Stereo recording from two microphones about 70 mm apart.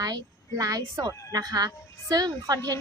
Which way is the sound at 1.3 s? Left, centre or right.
Right.